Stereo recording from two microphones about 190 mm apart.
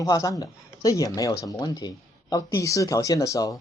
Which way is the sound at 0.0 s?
15° left (ahead or behind).